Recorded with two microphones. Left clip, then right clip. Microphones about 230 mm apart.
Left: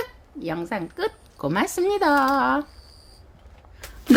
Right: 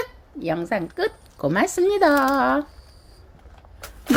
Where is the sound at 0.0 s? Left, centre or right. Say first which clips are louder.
Right 2 dB; centre.